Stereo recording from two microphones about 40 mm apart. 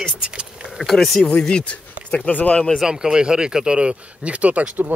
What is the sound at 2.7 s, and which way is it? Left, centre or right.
Speech, centre.